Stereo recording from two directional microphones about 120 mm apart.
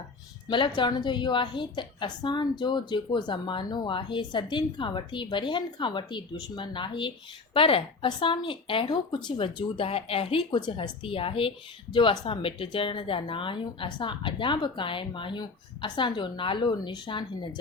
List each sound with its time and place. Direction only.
0.5 s a woman's voice: 40° left (ahead or behind)